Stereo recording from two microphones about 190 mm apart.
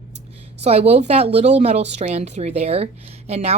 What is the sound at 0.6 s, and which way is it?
A woman's voice, 35° right (ahead or behind).